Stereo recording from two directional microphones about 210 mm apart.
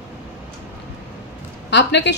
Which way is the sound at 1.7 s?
55° left (ahead or behind).